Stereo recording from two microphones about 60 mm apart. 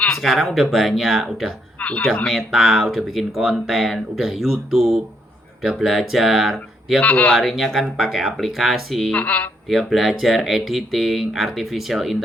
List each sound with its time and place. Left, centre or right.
0.1 s speech: centre
1.8 s a sound: left
2.2 s speech: centre
7.0 s speech: left
7.3 s speech: centre
9.1 s speech: left
9.6 s speech: centre